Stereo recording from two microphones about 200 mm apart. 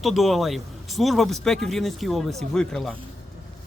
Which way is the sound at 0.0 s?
Centre (ahead or behind).